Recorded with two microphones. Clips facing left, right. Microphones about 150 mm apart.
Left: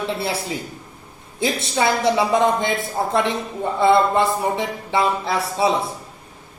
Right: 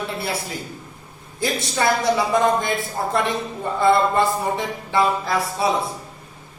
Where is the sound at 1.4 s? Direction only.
25° left (ahead or behind).